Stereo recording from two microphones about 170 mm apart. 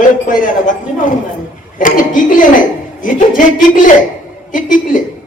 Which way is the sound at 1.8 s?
50° left (ahead or behind).